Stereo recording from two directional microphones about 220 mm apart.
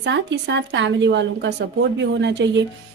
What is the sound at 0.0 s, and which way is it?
Speech, 55° right (ahead or behind).